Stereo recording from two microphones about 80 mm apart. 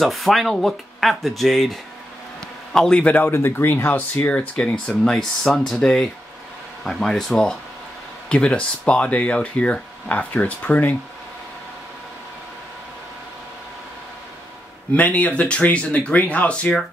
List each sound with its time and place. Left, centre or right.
0.0 s speech: centre
3.3 s speech: left
15.0 s speech: centre